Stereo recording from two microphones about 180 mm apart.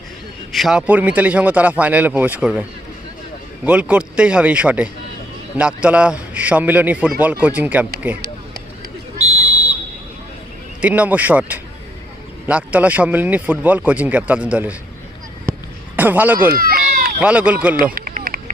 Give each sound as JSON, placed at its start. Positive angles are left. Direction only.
{"t": 0.5, "sound": "speech", "side_deg": 0}
{"t": 10.8, "sound": "speech", "side_deg": -10}
{"t": 16.0, "sound": "speech", "side_deg": -10}
{"t": 16.5, "sound": "a sound", "side_deg": -55}
{"t": 17.2, "sound": "speech", "side_deg": -5}
{"t": 17.9, "sound": "a sound", "side_deg": -55}